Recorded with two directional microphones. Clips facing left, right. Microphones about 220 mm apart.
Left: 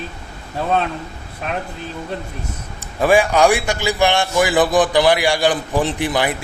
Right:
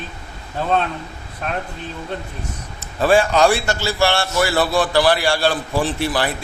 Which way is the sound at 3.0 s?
15° left (ahead or behind).